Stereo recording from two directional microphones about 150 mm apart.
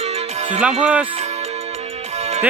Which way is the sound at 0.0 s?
45° right (ahead or behind).